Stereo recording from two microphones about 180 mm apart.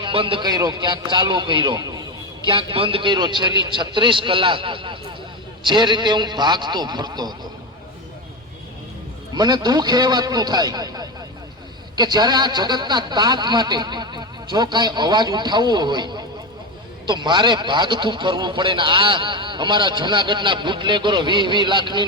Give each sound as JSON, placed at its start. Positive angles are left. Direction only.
{"t": 0.0, "sound": "a man's voice", "side_deg": -30}
{"t": 9.3, "sound": "a man's voice", "side_deg": -25}